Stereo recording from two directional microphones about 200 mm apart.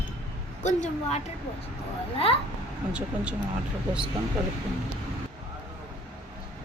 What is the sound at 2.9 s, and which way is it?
Speech, 5° right (ahead or behind).